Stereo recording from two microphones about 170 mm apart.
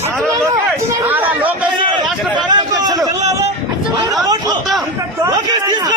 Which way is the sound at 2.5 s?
25° right (ahead or behind).